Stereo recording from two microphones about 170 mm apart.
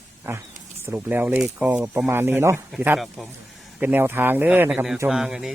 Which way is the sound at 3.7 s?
10° right (ahead or behind).